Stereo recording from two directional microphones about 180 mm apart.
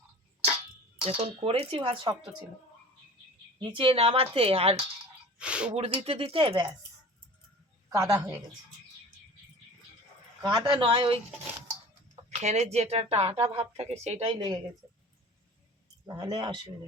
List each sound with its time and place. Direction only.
1.0 s a woman's voice: 30° right (ahead or behind)
3.6 s a woman's voice: 30° right (ahead or behind)
5.4 s speech: 5° right (ahead or behind)
5.7 s a woman's voice: 35° right (ahead or behind)
7.9 s a woman's voice: 20° right (ahead or behind)
10.4 s speech: 25° right (ahead or behind)
12.3 s a woman's voice: 40° right (ahead or behind)
16.0 s speech: 20° right (ahead or behind)